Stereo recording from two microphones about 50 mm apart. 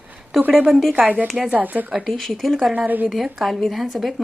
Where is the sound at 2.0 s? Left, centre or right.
Centre.